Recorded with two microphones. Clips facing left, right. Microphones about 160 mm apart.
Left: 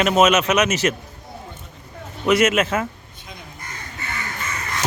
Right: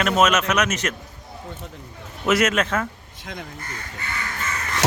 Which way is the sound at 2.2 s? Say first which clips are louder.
Left 3 dB; centre (ahead or behind).